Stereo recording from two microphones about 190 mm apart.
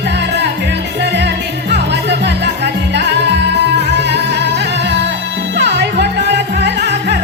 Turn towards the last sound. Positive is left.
turn(degrees=-60)  # may be behind; listen again after turning